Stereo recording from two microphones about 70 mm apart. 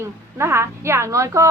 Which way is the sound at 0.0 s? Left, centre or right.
Right.